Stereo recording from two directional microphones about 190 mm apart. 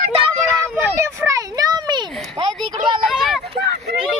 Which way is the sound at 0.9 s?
15° right (ahead or behind).